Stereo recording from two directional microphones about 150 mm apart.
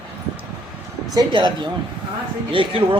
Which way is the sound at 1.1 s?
30° right (ahead or behind).